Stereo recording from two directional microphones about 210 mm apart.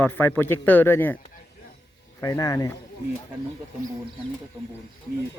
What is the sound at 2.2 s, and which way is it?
Speech, 15° left (ahead or behind).